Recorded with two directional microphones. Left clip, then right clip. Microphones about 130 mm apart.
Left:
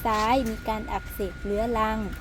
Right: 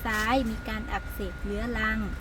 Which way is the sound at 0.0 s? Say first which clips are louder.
Left 3 dB; 25° left (ahead or behind).